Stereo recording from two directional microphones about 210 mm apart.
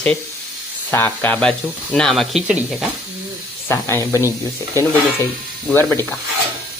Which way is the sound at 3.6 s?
10° left (ahead or behind).